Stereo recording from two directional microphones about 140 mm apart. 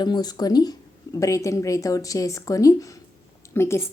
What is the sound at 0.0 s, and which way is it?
Speech, 30° left (ahead or behind).